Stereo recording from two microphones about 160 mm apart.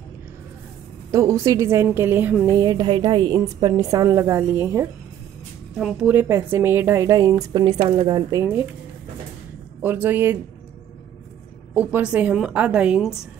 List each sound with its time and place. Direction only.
1.1 s a woman's voice: 20° right (ahead or behind)
2.5 s a woman's voice: 25° right (ahead or behind)
5.8 s a woman's voice: 5° right (ahead or behind)
9.8 s a woman's voice: 10° right (ahead or behind)
11.7 s a woman's voice: 10° right (ahead or behind)